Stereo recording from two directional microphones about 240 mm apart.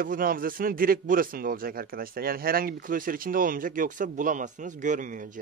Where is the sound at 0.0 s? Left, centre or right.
Right.